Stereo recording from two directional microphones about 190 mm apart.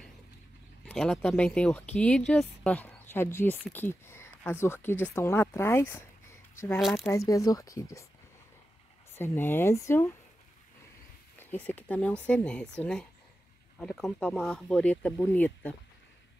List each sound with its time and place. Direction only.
0.8 s speech: 5° left (ahead or behind)
6.8 s speech: centre (ahead or behind)
7.1 s speech: 15° left (ahead or behind)
9.1 s speech: 10° left (ahead or behind)
11.3 s speech: 10° left (ahead or behind)